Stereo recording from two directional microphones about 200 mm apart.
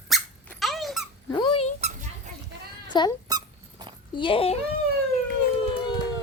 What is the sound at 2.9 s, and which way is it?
Speech, 20° left (ahead or behind).